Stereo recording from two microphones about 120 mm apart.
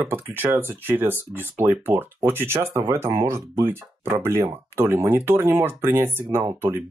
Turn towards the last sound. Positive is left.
turn(degrees=-20)  # may be behind; listen again after turning